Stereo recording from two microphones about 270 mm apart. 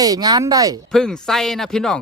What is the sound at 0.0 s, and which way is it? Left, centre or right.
Speech, centre.